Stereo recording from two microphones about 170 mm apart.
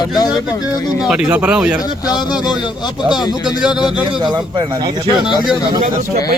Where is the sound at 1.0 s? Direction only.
5° right (ahead or behind).